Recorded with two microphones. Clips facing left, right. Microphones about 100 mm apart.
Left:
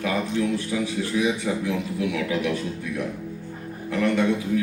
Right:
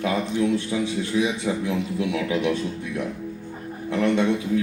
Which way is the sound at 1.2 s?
25° right (ahead or behind).